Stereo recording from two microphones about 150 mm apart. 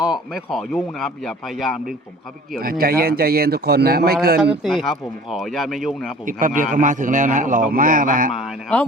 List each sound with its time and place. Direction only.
0.3 s speech: centre (ahead or behind)
2.6 s a man's voice: 75° right (ahead or behind)
4.4 s speech: centre (ahead or behind)
6.2 s a man's voice: 65° right (ahead or behind)
8.3 s speech: 5° right (ahead or behind)